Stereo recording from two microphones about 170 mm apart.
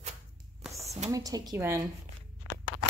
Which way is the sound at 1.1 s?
20° right (ahead or behind).